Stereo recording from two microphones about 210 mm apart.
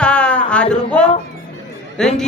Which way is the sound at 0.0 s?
5° left (ahead or behind).